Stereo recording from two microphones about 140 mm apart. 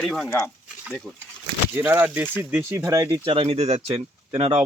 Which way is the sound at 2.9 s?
25° right (ahead or behind).